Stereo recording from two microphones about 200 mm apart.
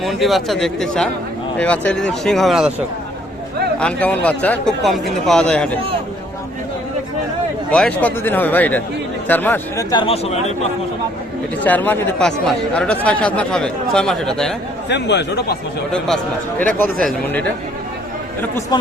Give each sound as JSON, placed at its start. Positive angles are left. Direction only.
{"t": 0.0, "sound": "speech", "side_deg": 0}
{"t": 3.8, "sound": "speech", "side_deg": 5}
{"t": 7.7, "sound": "a man's voice", "side_deg": 5}
{"t": 9.9, "sound": "speech", "side_deg": 25}
{"t": 11.6, "sound": "speech", "side_deg": 10}
{"t": 14.8, "sound": "speech", "side_deg": 60}
{"t": 15.9, "sound": "a man's voice", "side_deg": 5}
{"t": 18.7, "sound": "speech", "side_deg": 20}